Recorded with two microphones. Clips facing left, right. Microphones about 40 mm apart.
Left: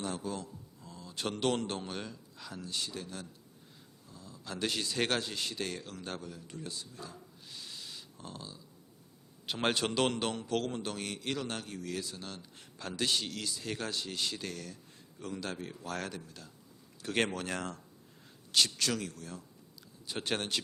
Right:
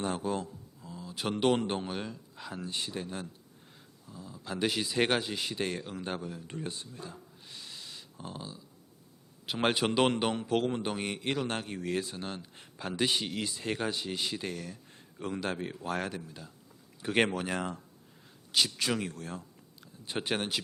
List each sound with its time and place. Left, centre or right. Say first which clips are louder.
0.0 s speech: right 5 dB; right
0.8 s speech: right 2 dB; centre; by 7.2 s right
7.4 s owl: even; centre
8.2 s a man's voice: right 6 dB; centre
14.9 s a man's voice: right 5 dB; right
16.0 s a man's voice: right 4 dB; centre
18.9 s speech: right 3 dB; right
19.1 s speech: right 5 dB; right
20.2 s a man's voice: right 1 dB; centre